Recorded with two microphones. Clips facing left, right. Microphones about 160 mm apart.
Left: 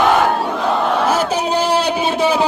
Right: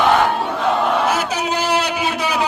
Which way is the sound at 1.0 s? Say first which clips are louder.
Left 3 dB; 30° left (ahead or behind).